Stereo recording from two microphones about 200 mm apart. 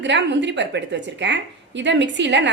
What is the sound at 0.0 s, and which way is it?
A woman's voice, 60° right (ahead or behind).